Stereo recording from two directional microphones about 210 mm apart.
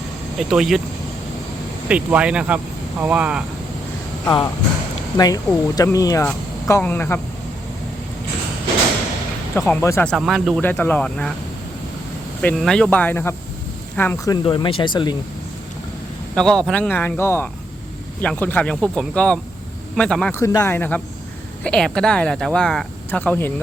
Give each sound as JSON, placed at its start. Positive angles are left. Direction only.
{"t": 0.3, "sound": "speech", "side_deg": 0}
{"t": 1.9, "sound": "speech", "side_deg": -5}
{"t": 5.1, "sound": "speech", "side_deg": 15}
{"t": 9.6, "sound": "speech", "side_deg": 10}
{"t": 10.2, "sound": "speech", "side_deg": 0}
{"t": 12.4, "sound": "speech", "side_deg": 5}
{"t": 14.4, "sound": "speech", "side_deg": 25}
{"t": 16.3, "sound": "speech", "side_deg": 5}
{"t": 20.4, "sound": "speech", "side_deg": 15}